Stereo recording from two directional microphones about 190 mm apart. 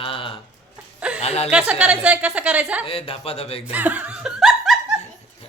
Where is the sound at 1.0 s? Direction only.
5° right (ahead or behind).